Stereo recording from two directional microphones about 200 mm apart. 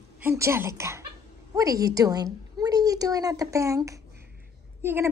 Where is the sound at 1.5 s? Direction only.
15° right (ahead or behind).